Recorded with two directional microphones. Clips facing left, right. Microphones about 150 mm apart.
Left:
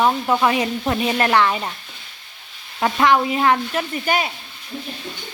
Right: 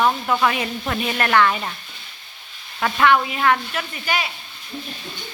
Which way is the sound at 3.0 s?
30° left (ahead or behind).